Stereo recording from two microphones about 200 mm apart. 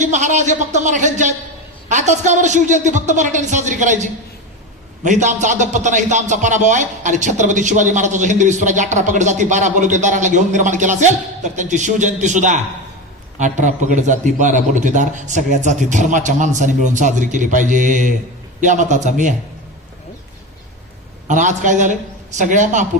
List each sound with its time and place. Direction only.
0.0 s a man's voice: 35° right (ahead or behind)
21.2 s a man's voice: 40° right (ahead or behind)